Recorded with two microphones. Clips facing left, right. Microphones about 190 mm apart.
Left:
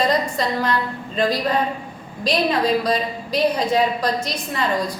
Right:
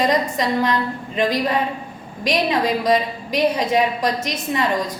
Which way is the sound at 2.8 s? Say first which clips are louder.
Right 3 dB; 15° right (ahead or behind).